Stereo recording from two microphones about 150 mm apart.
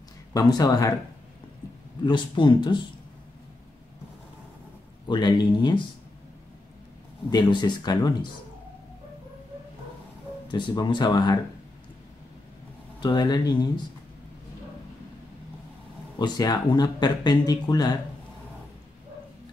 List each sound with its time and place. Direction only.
0.3 s speech: 25° left (ahead or behind)
2.0 s speech: 30° left (ahead or behind)
5.0 s speech: 30° left (ahead or behind)
7.2 s speech: 30° left (ahead or behind)
10.5 s speech: 30° left (ahead or behind)
13.0 s speech: 25° left (ahead or behind)
16.2 s speech: 25° left (ahead or behind)